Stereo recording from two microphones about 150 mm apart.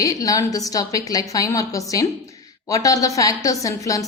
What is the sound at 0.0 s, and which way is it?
A woman's voice, 25° left (ahead or behind).